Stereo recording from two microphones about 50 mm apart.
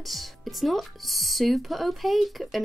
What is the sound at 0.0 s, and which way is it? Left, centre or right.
Speech, centre.